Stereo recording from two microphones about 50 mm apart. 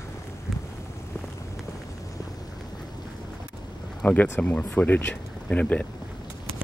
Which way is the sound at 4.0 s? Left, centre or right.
Left.